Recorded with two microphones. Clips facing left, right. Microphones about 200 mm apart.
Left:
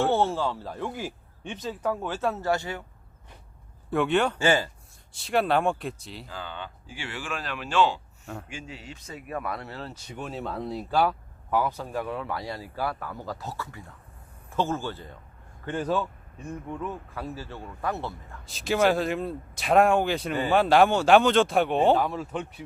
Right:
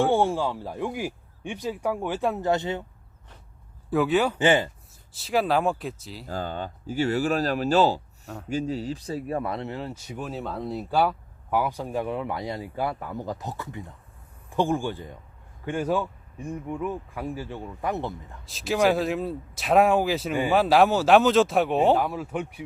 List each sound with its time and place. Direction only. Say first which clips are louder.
0.0 s speech: right 2 dB; 15° right (ahead or behind)
3.8 s speech: right 2 dB; centre (ahead or behind)
4.4 s speech: right 3 dB; 20° right (ahead or behind)
5.1 s speech: right 1 dB; centre (ahead or behind)
6.2 s speech: right 8 dB; 40° right (ahead or behind); by 9.9 s 20° right (ahead or behind)
10.1 s speech: left 1 dB; 5° right (ahead or behind); by 18.3 s 20° right (ahead or behind)
18.4 s speech: right 1 dB; centre (ahead or behind)